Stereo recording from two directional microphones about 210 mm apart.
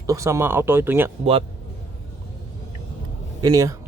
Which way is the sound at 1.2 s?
30° right (ahead or behind).